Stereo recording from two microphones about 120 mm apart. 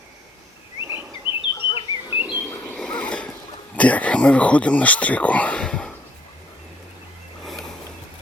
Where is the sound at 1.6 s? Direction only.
45° left (ahead or behind).